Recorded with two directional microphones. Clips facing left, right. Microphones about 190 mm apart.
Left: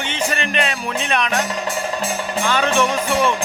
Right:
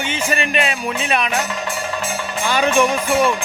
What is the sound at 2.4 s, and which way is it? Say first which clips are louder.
Speech: right 2 dB; 10° right (ahead or behind).